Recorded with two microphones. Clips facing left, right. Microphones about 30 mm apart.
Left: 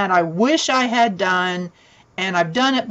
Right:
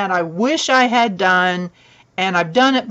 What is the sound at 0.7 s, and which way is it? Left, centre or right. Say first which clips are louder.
Speech: right 3 dB; centre.